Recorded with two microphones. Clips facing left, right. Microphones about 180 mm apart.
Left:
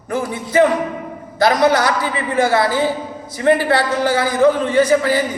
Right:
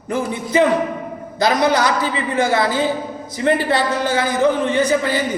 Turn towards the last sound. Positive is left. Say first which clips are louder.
# left 3 dB
turn(degrees=-20)  # may be behind; listen again after turning